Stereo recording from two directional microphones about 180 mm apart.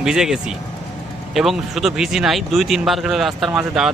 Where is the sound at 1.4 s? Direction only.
Centre (ahead or behind).